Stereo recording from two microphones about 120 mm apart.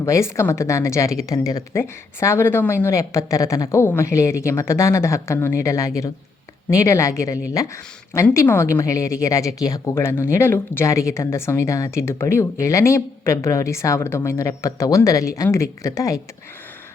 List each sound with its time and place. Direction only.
0.0 s a woman's voice: 25° left (ahead or behind)